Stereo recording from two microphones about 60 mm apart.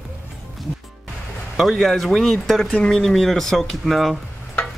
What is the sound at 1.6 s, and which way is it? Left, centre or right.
Speech, centre.